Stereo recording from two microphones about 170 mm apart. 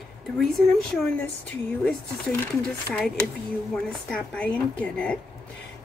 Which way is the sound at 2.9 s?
5° left (ahead or behind).